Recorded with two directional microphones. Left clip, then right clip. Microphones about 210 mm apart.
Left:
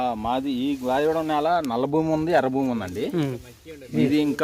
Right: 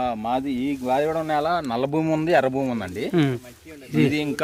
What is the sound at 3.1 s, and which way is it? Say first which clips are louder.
Speech: right 8 dB; 35° right (ahead or behind).